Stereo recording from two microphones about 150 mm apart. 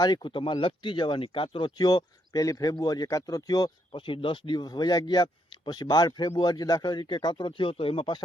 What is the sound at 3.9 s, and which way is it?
Speech, 35° left (ahead or behind).